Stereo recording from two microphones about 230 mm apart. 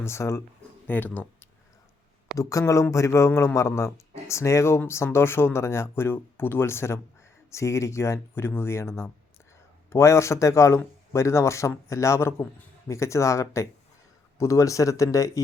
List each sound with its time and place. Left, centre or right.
0.0 s speech: centre
2.4 s speech: centre